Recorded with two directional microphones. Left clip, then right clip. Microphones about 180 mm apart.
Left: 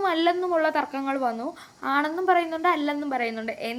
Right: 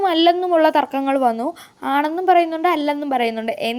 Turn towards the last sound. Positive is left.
turn(degrees=-45)  # may be behind; listen again after turning